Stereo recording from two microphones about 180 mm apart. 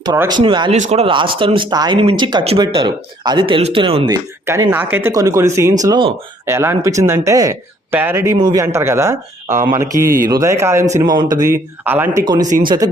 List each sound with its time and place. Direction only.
0.0 s speech: 20° right (ahead or behind)
4.4 s speech: 15° right (ahead or behind)
6.4 s speech: 15° right (ahead or behind)
12.2 s speech: 25° right (ahead or behind)